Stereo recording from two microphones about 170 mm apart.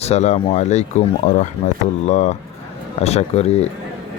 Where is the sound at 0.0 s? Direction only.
40° left (ahead or behind).